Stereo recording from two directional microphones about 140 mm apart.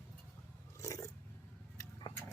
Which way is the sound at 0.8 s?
25° left (ahead or behind).